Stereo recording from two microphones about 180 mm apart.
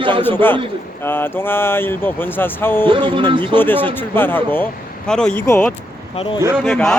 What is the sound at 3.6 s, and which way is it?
A man's voice, 10° left (ahead or behind).